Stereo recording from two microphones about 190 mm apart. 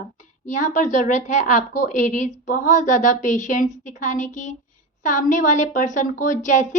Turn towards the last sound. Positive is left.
turn(degrees=40)  # may be behind; listen again after turning